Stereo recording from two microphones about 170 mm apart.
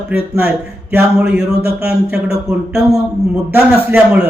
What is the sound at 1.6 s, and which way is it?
Speech, 70° right (ahead or behind).